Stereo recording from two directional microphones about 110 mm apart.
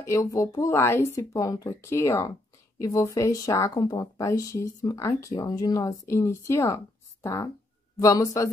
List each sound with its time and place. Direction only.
0.0 s speech: 30° left (ahead or behind)